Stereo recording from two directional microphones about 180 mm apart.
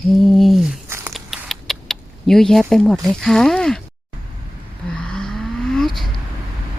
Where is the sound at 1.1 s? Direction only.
Centre (ahead or behind).